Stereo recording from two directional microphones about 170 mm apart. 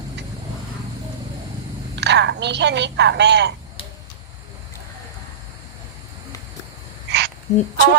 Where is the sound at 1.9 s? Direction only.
90° right.